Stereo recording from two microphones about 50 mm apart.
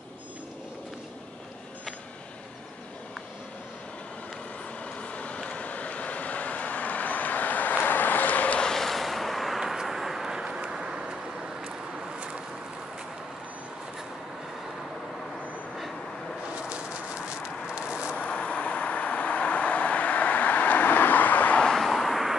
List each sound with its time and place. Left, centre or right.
5.0 s vehicle: left
8.5 s vehicle: centre
16.5 s a sound: right
18.1 s vehicle: centre
21.7 s vehicle: centre